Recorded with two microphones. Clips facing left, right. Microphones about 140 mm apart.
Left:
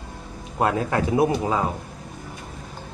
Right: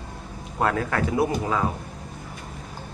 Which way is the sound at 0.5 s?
20° left (ahead or behind).